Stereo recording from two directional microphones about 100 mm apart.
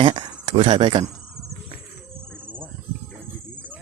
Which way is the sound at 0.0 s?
65° right (ahead or behind).